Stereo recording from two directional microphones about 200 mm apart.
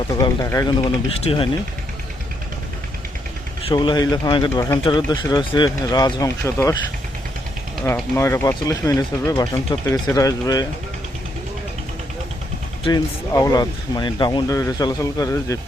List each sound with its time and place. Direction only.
0.2 s speech: 15° left (ahead or behind)
1.2 s speech: 25° left (ahead or behind)
3.7 s speech: 20° left (ahead or behind)
7.9 s speech: 10° left (ahead or behind)
12.8 s speech: 20° left (ahead or behind)